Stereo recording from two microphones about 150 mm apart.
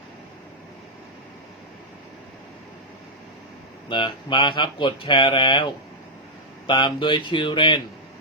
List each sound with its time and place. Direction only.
3.8 s speech: 30° left (ahead or behind)
6.7 s speech: 30° left (ahead or behind)